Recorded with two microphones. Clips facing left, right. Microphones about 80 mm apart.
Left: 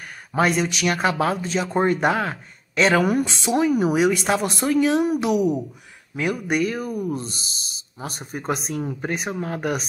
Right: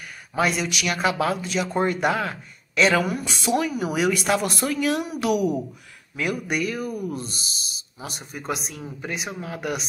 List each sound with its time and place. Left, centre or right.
0.3 s speech: left
3.3 s speech: left